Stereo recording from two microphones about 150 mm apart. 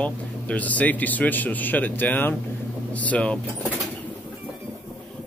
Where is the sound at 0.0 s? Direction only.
10° left (ahead or behind).